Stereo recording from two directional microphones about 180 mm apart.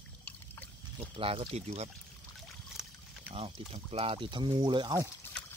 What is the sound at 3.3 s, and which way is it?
Speech, 35° right (ahead or behind).